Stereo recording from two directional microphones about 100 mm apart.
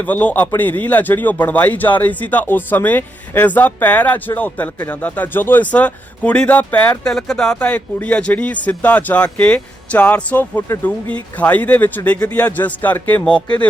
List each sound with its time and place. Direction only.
0.0 s a man's voice: 15° left (ahead or behind)
7.0 s a man's voice: 5° left (ahead or behind)